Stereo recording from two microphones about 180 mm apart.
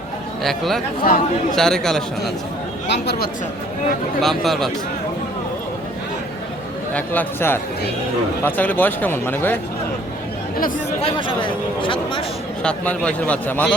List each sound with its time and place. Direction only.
0.4 s speech: centre (ahead or behind)
1.0 s speech: 50° left (ahead or behind)
1.5 s speech: 5° left (ahead or behind)
2.8 s speech: 70° left (ahead or behind)
4.2 s speech: centre (ahead or behind)
6.9 s speech: 10° left (ahead or behind)
11.0 s speech: 30° left (ahead or behind)
12.6 s speech: 5° left (ahead or behind)